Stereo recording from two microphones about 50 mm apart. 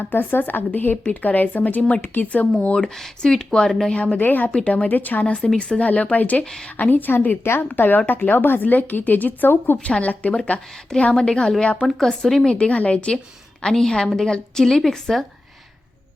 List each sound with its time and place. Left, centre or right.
0.0 s a woman's voice: left
2.9 s speech: centre
3.9 s speech: left
4.2 s a woman's voice: left
5.2 s speech: centre
6.4 s speech: centre
6.7 s a woman's voice: left
11.9 s speech: centre
12.5 s speech: left
13.6 s speech: centre